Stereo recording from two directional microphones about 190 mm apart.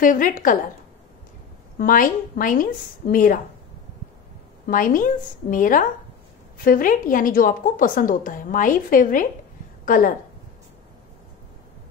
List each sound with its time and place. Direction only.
0.0 s a woman's voice: 45° left (ahead or behind)
1.8 s a woman's voice: 45° left (ahead or behind)
4.6 s a woman's voice: 45° left (ahead or behind)